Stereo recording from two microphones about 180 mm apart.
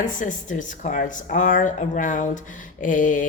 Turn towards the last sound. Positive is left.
turn(degrees=45)  # may be behind; listen again after turning